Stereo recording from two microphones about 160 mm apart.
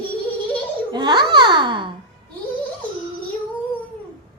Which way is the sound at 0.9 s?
25° right (ahead or behind).